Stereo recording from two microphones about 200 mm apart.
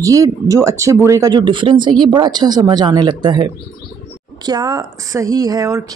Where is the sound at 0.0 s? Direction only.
15° right (ahead or behind).